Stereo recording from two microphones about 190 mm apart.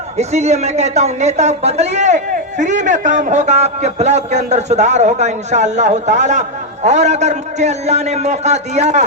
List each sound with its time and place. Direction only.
0.2 s a woman's voice: 35° right (ahead or behind)